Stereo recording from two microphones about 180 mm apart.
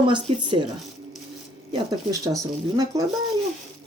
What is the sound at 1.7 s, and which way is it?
A woman's voice, 20° right (ahead or behind).